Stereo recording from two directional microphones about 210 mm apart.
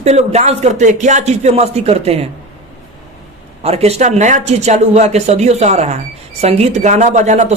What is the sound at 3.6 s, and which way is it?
Speech, 30° right (ahead or behind).